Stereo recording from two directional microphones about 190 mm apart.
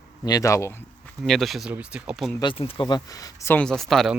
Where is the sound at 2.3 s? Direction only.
25° left (ahead or behind); by 4.1 s centre (ahead or behind).